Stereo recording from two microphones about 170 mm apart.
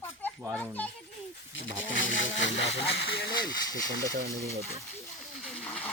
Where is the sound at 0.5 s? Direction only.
10° left (ahead or behind).